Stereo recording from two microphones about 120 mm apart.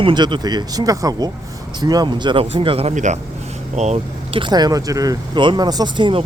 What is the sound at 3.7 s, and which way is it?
Speech, 70° right (ahead or behind).